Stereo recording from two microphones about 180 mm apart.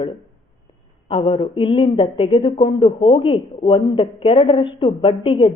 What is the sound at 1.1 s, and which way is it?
Speech, 30° left (ahead or behind).